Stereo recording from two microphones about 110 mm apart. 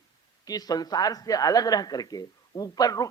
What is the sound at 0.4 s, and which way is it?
Speech, 35° left (ahead or behind).